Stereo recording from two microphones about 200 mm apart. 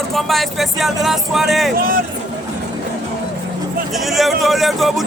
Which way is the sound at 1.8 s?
45° right (ahead or behind).